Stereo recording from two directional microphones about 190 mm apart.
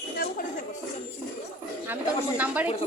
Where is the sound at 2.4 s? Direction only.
10° right (ahead or behind).